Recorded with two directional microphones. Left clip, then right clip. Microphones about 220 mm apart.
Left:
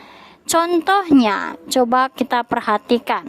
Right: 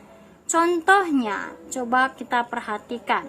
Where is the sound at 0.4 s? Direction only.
40° left (ahead or behind).